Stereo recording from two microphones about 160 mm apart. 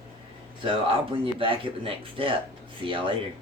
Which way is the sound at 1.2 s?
35° right (ahead or behind).